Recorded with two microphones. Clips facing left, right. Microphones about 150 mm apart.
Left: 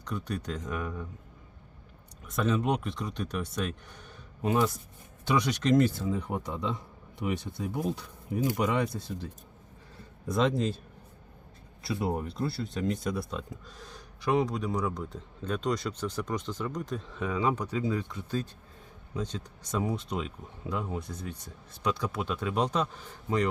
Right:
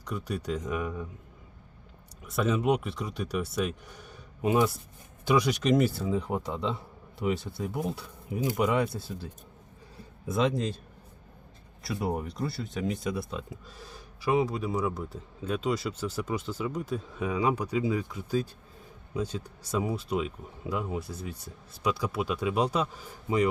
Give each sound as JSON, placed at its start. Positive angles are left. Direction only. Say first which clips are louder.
{"t": 0.0, "sound": "speech", "louder": "right 1 dB", "side_deg": -10}
{"t": 2.2, "sound": "speech", "louder": "right 2 dB", "side_deg": -10}
{"t": 8.5, "sound": "speech", "louder": "right 2 dB", "side_deg": -10}
{"t": 10.2, "sound": "speech", "louder": "even", "side_deg": 0}
{"t": 11.8, "sound": "speech", "louder": "even", "side_deg": 0}